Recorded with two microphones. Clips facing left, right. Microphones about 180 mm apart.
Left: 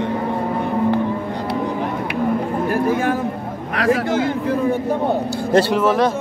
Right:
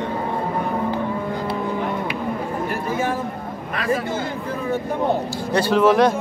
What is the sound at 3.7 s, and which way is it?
Speech, 80° left.